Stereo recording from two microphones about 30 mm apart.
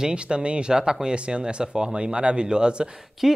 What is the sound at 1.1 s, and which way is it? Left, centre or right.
Speech, right.